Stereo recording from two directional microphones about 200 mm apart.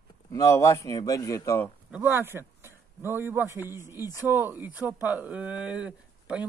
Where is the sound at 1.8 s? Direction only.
10° right (ahead or behind).